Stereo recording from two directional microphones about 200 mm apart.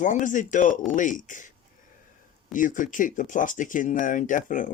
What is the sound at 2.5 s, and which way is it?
Speech, 40° left (ahead or behind).